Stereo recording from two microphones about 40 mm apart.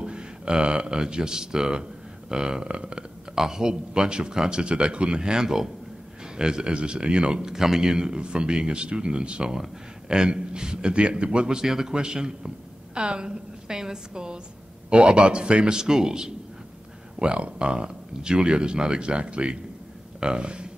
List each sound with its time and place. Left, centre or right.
0.0 s speech: right
3.3 s a man's voice: centre
17.2 s a man's voice: right